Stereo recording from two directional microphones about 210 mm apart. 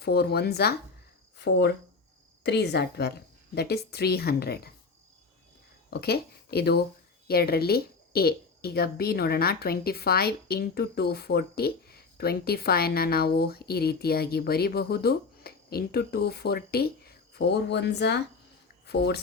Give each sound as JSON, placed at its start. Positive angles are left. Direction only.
{"t": 0.0, "sound": "a woman's voice", "side_deg": 50}
{"t": 5.9, "sound": "a woman's voice", "side_deg": 50}